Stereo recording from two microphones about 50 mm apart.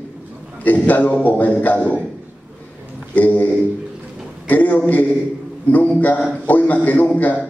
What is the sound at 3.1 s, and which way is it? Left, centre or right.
A man's voice, left.